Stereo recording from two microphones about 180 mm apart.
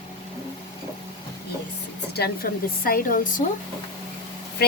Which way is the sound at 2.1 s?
60° left (ahead or behind).